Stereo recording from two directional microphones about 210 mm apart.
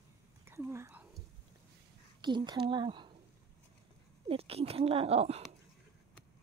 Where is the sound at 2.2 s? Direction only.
20° right (ahead or behind).